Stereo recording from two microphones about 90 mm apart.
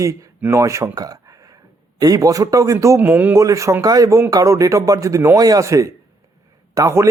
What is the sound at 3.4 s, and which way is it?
A man's voice, 35° right (ahead or behind).